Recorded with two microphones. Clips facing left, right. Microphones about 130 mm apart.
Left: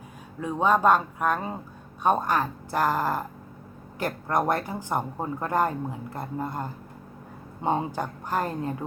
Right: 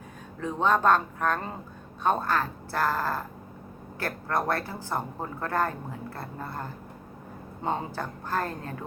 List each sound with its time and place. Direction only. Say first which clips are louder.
0.3 s speech: left 2 dB; 10° left (ahead or behind)